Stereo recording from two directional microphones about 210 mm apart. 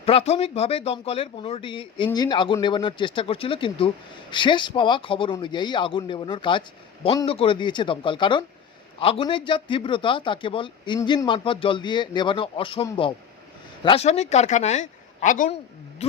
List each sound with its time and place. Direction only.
0.0 s speech: 30° left (ahead or behind)
13.8 s speech: 30° left (ahead or behind)